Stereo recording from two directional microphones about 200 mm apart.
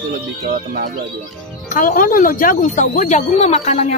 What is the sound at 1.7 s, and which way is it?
Speech, 45° left (ahead or behind).